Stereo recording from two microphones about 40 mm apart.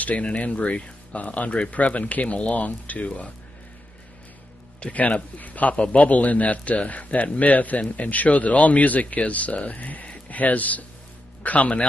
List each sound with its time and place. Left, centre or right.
0.0 s speech: left
4.7 s speech: left